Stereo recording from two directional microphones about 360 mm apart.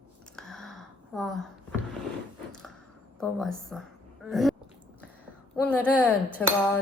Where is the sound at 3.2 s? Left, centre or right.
Centre.